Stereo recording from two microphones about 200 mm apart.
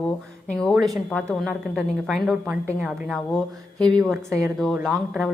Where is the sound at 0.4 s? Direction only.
5° left (ahead or behind).